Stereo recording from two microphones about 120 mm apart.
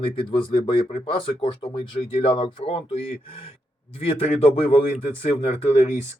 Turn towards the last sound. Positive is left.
turn(degrees=65)  # may be behind; listen again after turning